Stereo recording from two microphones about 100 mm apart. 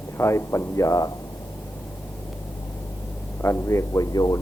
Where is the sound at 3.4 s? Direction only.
25° left (ahead or behind).